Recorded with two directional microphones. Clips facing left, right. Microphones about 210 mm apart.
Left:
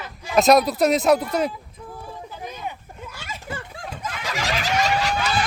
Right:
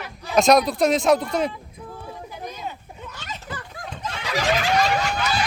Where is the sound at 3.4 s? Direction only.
30° left (ahead or behind).